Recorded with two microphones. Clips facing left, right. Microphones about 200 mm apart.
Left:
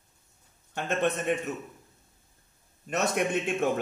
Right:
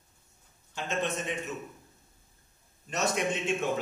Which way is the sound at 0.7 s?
60° left (ahead or behind).